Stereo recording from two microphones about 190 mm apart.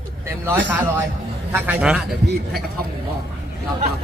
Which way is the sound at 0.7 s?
10° right (ahead or behind).